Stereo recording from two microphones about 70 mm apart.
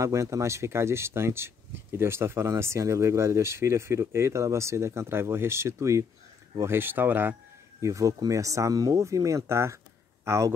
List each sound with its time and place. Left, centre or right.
0.0 s speech: right
6.6 s speech: right
7.8 s speech: right